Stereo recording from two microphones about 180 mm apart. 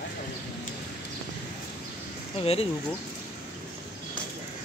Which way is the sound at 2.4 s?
30° left (ahead or behind).